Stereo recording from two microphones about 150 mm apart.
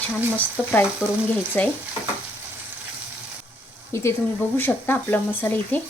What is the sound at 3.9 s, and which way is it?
Speech, 20° left (ahead or behind).